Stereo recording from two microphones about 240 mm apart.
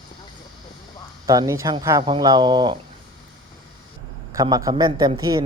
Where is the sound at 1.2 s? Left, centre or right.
Centre.